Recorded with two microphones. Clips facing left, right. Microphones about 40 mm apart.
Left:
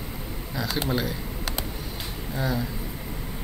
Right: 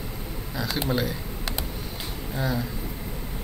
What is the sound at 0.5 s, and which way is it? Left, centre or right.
Speech, centre.